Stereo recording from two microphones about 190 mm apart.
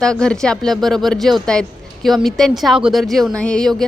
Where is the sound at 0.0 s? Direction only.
5° left (ahead or behind).